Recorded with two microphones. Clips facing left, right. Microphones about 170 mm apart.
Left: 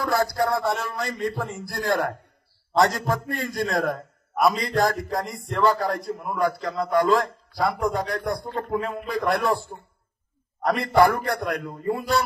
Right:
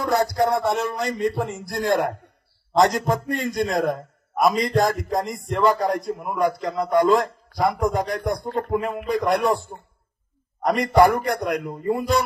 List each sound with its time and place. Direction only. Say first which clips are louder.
0.0 s a man's voice: right 3 dB; 20° right (ahead or behind)
10.6 s a man's voice: right 2 dB; 20° right (ahead or behind)